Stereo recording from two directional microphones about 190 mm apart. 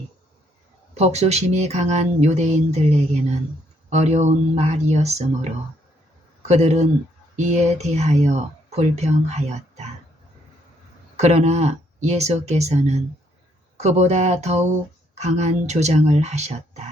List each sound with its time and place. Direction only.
0.9 s speech: 35° right (ahead or behind)
11.2 s speech: 35° right (ahead or behind)